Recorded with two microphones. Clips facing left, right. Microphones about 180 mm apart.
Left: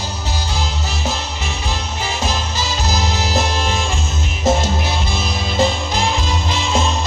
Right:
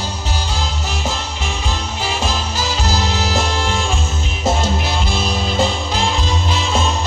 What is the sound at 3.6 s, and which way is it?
Music, 15° left (ahead or behind).